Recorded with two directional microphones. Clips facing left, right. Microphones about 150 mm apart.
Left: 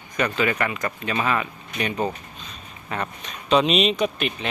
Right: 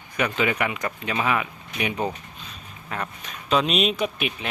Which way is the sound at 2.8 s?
Centre (ahead or behind).